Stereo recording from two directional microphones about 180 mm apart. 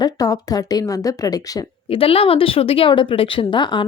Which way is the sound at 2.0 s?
30° left (ahead or behind).